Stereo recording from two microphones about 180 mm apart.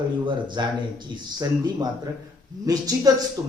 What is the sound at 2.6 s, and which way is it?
Speech, 20° right (ahead or behind).